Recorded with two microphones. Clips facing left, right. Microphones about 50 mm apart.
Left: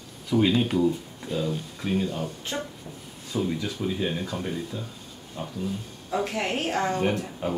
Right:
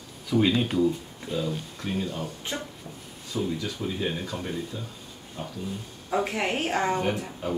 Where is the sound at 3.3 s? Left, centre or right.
Centre.